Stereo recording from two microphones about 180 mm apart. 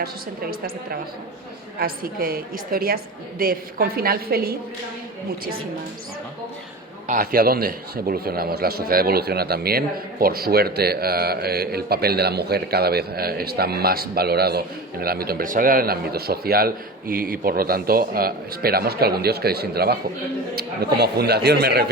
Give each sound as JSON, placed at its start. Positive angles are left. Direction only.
{"t": 1.8, "sound": "a man's voice", "side_deg": -55}
{"t": 7.1, "sound": "a man's voice", "side_deg": -55}